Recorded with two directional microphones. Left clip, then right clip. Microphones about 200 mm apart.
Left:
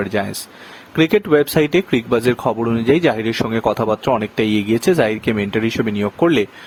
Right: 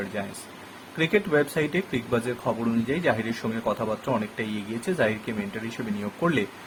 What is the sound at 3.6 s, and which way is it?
Speech, 50° left (ahead or behind).